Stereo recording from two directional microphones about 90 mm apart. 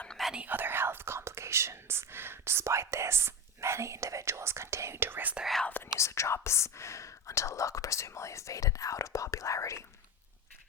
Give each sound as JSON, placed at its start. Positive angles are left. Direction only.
{"t": 0.3, "sound": "whispering", "side_deg": -20}
{"t": 5.6, "sound": "whispering", "side_deg": 20}
{"t": 6.0, "sound": "speech", "side_deg": 30}